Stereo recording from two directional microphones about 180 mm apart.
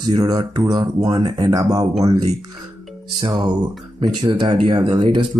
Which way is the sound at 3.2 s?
20° right (ahead or behind).